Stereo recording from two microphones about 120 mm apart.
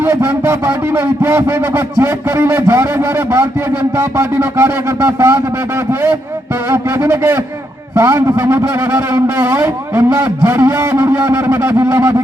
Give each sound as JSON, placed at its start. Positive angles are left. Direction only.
{"t": 0.0, "sound": "a man's voice", "side_deg": -15}